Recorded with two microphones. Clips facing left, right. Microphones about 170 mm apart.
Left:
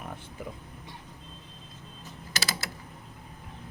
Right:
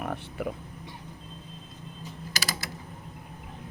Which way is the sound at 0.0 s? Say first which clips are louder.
Right 7 dB; 70° right (ahead or behind).